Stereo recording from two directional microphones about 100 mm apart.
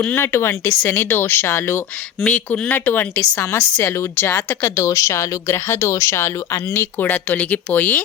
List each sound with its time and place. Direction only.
0.0 s speech: 20° left (ahead or behind)
4.7 s speech: 30° left (ahead or behind)